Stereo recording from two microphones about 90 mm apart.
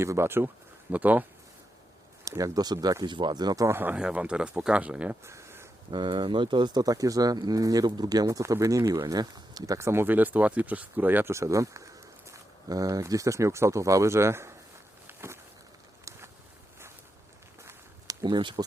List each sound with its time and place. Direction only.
0.0 s speech: 30° right (ahead or behind)
2.4 s speech: 45° right (ahead or behind)
3.7 s speech: 20° right (ahead or behind)
5.2 s a sound: 30° right (ahead or behind)
5.9 s speech: 60° right (ahead or behind)
9.7 s speech: 30° right (ahead or behind)
15.0 s walk: 30° right (ahead or behind)
18.1 s a sound: 45° right (ahead or behind)
18.3 s speech: 65° right (ahead or behind)